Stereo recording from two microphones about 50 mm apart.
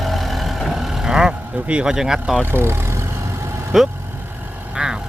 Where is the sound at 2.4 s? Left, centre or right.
Right.